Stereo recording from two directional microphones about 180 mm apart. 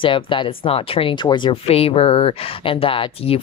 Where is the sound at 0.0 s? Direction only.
30° left (ahead or behind).